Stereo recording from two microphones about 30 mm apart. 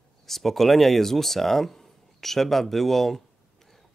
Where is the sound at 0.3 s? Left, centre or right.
Centre.